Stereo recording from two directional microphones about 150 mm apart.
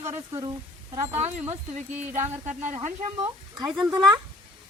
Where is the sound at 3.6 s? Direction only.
25° right (ahead or behind).